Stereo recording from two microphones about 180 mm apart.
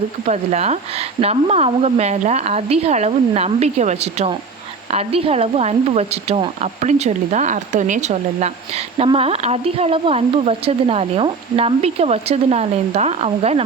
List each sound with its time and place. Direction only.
0.3 s speech: 40° right (ahead or behind)